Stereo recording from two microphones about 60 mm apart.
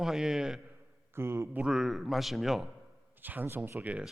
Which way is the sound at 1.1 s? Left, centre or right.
Right.